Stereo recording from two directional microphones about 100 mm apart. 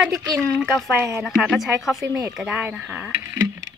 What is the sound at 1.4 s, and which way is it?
Speech, centre (ahead or behind).